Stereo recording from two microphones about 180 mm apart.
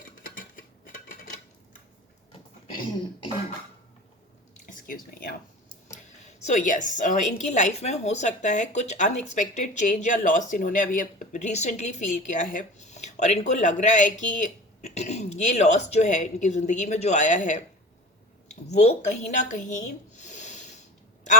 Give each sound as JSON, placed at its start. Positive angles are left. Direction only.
{"t": 4.6, "sound": "speech", "side_deg": 50}
{"t": 6.4, "sound": "a woman's voice", "side_deg": 45}